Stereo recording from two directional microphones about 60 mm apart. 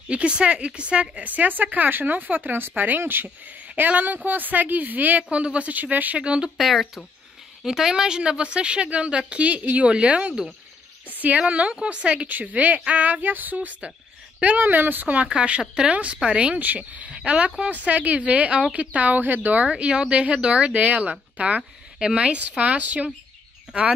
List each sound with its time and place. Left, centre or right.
0.1 s speech: centre
6.6 s speech: centre; by 15.2 s right
15.2 s speech: centre